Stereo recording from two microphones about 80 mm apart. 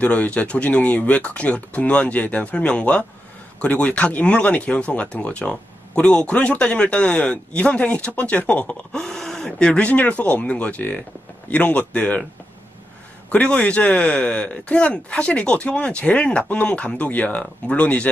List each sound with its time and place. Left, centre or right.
0.0 s a man's voice: centre
13.3 s speech: centre